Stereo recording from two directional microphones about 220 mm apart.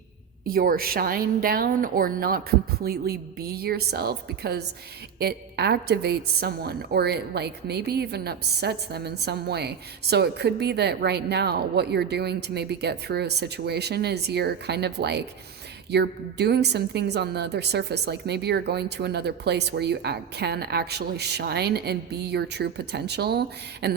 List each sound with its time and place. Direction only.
0.4 s a woman's voice: 40° right (ahead or behind)